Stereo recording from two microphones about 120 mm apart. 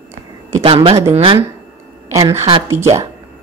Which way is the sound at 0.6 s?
50° right (ahead or behind).